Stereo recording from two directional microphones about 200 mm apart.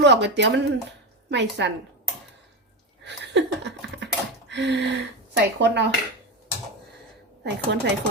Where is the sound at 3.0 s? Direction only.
60° right (ahead or behind).